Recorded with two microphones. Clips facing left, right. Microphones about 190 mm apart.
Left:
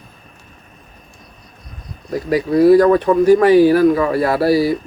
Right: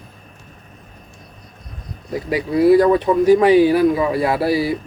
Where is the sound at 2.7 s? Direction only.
15° right (ahead or behind).